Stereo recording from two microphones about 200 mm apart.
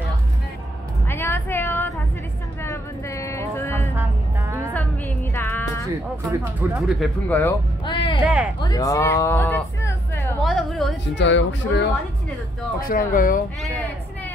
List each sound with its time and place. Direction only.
1.0 s a sound: 10° left (ahead or behind)
2.6 s music: 15° left (ahead or behind)
3.9 s music: 10° right (ahead or behind)
4.7 s music: 10° left (ahead or behind)
6.2 s speech: 10° right (ahead or behind); by 7.5 s 10° left (ahead or behind)
7.8 s music: 25° left (ahead or behind)
8.5 s speech: 20° left (ahead or behind)
10.4 s a sound: centre (ahead or behind)
11.1 s speech: 65° left (ahead or behind)
12.8 s speech: 45° left (ahead or behind)